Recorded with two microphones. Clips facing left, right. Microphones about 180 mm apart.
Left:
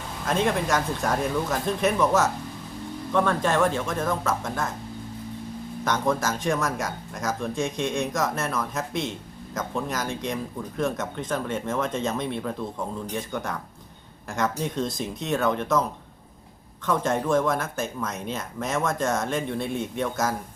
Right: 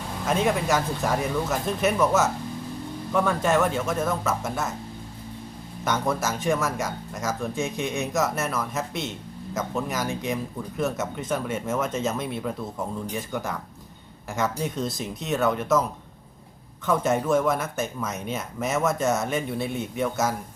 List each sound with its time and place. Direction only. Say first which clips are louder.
0.3 s speech: right 1 dB; 5° right (ahead or behind)
5.8 s speech: left 1 dB; 5° right (ahead or behind)
16.8 s speech: right 1 dB; 5° right (ahead or behind)